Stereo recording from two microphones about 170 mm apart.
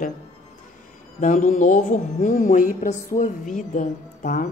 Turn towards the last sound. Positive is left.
turn(degrees=50)  # may be behind; listen again after turning